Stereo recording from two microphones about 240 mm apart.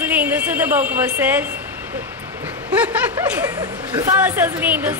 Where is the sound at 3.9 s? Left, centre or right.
Centre.